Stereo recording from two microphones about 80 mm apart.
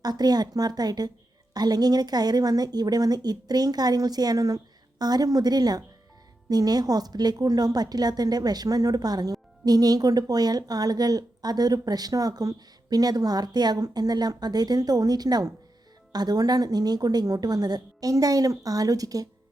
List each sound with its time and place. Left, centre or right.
0.0 s a woman's voice: right